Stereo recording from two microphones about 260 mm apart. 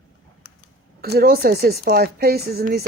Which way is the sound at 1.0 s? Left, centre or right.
Right.